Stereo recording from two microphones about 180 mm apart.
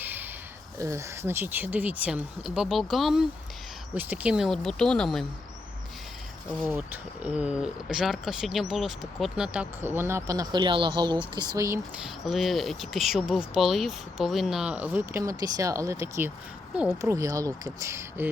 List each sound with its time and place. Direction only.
0.0 s a sound: 10° right (ahead or behind)
0.8 s speech: 15° right (ahead or behind); by 5.2 s 5° left (ahead or behind)
6.7 s speech: 10° right (ahead or behind)
12.0 s speech: centre (ahead or behind)
16.7 s speech: 5° right (ahead or behind)
17.0 s speech: 15° right (ahead or behind)